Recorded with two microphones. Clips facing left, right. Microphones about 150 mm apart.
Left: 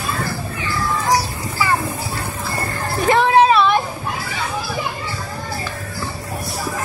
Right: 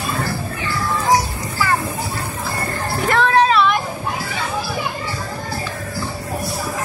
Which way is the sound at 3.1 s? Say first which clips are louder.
Left 3 dB; 15° left (ahead or behind).